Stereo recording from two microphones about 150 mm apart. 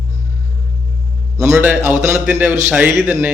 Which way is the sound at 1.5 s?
10° right (ahead or behind).